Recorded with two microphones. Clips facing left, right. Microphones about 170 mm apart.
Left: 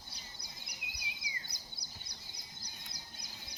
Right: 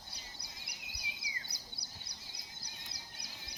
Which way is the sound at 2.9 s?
65° right (ahead or behind).